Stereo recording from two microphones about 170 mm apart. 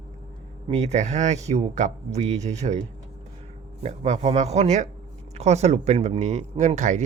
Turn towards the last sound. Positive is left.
turn(degrees=-45)  # may be behind; listen again after turning